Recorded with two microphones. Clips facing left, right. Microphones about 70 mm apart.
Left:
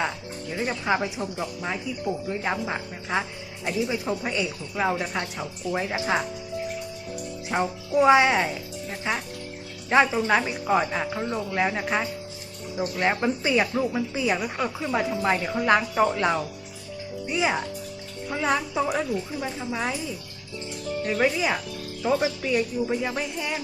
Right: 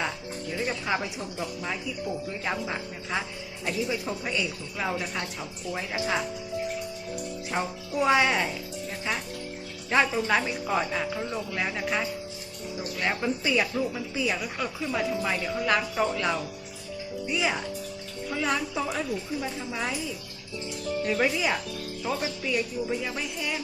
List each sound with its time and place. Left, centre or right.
0.5 s speech: centre
7.5 s speech: centre
9.9 s speech: centre
21.0 s speech: centre